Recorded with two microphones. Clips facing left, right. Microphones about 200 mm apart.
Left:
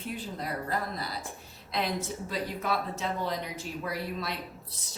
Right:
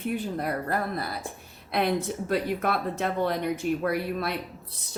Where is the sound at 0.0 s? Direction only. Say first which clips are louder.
Right 7 dB; 60° right (ahead or behind).